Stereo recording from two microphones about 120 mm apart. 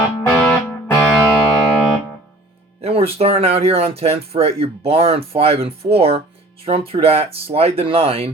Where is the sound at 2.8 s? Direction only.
55° right (ahead or behind).